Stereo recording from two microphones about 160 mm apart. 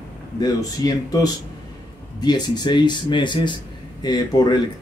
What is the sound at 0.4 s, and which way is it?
Speech, 25° left (ahead or behind).